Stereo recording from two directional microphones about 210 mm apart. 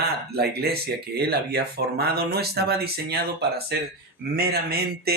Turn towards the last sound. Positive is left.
turn(degrees=-50)  # may be behind; listen again after turning